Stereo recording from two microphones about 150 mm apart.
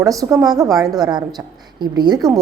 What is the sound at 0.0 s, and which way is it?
A woman's voice, 20° right (ahead or behind).